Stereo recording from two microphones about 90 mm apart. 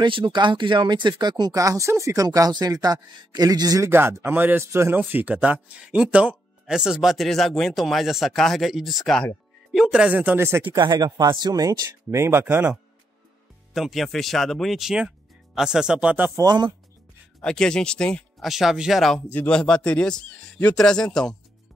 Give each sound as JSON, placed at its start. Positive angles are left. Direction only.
{"t": 0.0, "sound": "speech", "side_deg": -60}
{"t": 3.9, "sound": "speech", "side_deg": -25}
{"t": 9.8, "sound": "speech", "side_deg": -15}
{"t": 10.7, "sound": "speech", "side_deg": -45}
{"t": 11.1, "sound": "speech", "side_deg": -35}
{"t": 11.3, "sound": "speech", "side_deg": -50}
{"t": 13.7, "sound": "speech", "side_deg": 0}
{"t": 16.4, "sound": "speech", "side_deg": -55}
{"t": 17.4, "sound": "a man's voice", "side_deg": 10}
{"t": 18.4, "sound": "speech", "side_deg": -5}
{"t": 19.3, "sound": "a man's voice", "side_deg": 15}